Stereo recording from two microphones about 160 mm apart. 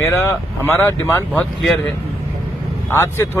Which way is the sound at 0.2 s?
15° left (ahead or behind).